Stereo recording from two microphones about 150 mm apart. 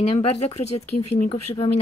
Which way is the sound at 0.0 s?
40° left (ahead or behind).